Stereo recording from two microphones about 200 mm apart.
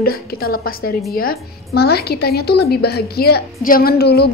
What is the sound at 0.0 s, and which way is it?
A woman's voice, 50° left (ahead or behind).